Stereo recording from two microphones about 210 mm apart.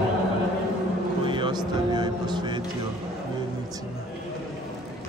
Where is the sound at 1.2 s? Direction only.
20° right (ahead or behind).